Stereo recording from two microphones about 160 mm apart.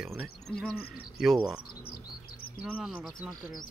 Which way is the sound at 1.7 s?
65° left (ahead or behind).